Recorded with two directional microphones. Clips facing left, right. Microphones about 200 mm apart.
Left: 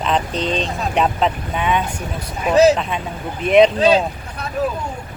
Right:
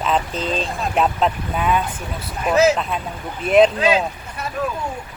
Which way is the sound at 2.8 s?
Centre (ahead or behind).